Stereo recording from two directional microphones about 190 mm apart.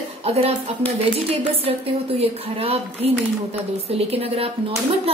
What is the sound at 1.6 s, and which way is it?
A woman's voice, 30° right (ahead or behind).